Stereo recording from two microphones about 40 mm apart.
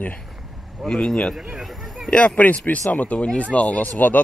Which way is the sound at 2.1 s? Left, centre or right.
Left.